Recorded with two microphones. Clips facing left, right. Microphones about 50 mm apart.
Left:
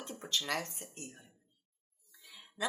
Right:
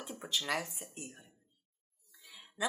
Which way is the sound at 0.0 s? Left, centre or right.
Centre.